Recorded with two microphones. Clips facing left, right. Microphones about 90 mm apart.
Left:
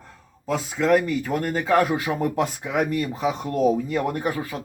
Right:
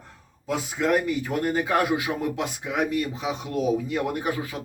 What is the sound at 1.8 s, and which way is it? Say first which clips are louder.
Speech: left 2 dB; 45° left (ahead or behind).